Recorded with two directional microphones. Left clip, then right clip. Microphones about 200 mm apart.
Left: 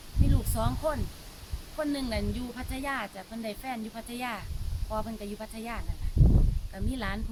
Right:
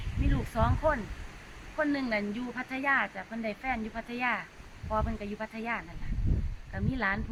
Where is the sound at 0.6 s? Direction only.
15° left (ahead or behind).